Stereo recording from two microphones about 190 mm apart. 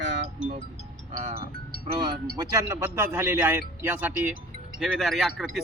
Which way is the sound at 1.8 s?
30° right (ahead or behind).